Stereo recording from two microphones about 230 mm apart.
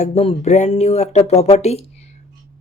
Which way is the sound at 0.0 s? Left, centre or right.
Left.